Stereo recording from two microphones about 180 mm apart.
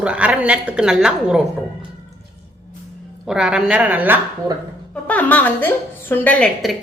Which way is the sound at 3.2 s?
5° right (ahead or behind).